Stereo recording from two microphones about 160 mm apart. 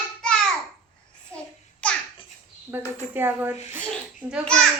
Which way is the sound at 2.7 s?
10° right (ahead or behind).